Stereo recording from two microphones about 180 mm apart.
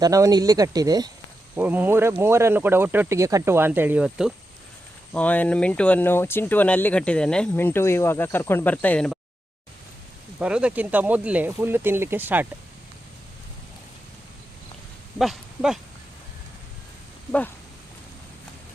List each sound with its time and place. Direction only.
0.0 s speech: 20° right (ahead or behind)
1.5 s speech: 10° right (ahead or behind)
5.1 s speech: 10° left (ahead or behind)
10.4 s speech: 5° right (ahead or behind)
15.2 s speech: centre (ahead or behind)